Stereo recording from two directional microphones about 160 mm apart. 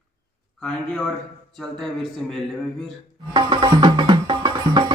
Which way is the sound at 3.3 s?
30° right (ahead or behind).